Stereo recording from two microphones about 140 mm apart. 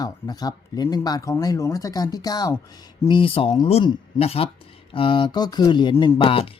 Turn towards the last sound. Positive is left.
turn(degrees=40)  # may be behind; listen again after turning